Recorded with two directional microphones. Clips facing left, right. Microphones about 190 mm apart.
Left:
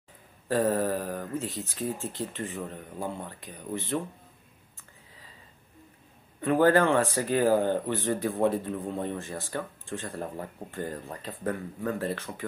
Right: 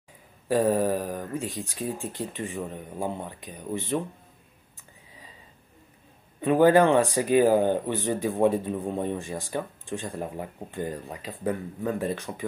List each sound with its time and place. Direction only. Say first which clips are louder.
0.5 s speech: right 3 dB; 15° right (ahead or behind)
6.4 s speech: right 3 dB; 15° right (ahead or behind)